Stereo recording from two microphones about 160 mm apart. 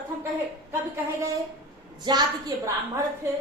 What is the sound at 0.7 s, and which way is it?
A woman's voice, 15° right (ahead or behind).